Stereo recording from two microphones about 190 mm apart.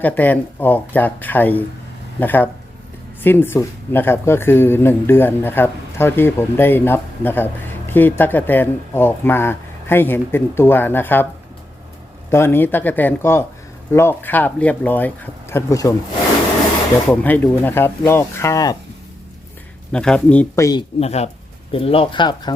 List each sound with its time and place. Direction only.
0.0 s speech: 10° left (ahead or behind)
12.3 s speech: 10° left (ahead or behind)
17.1 s speech: 10° left (ahead or behind)
19.9 s speech: 5° left (ahead or behind)
21.0 s speech: 35° left (ahead or behind)